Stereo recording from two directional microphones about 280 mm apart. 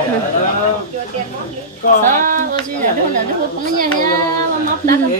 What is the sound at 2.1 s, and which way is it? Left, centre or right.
Speech, right.